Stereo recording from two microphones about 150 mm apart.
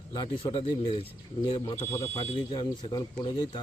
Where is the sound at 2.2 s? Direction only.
35° left (ahead or behind).